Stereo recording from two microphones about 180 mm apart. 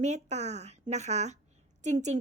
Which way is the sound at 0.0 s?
40° right (ahead or behind).